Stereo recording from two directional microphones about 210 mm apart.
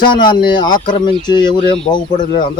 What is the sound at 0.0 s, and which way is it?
Speech, 20° left (ahead or behind).